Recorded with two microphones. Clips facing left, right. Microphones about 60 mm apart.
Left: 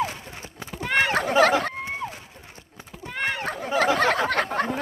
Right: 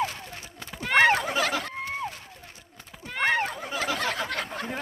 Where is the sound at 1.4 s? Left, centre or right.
Left.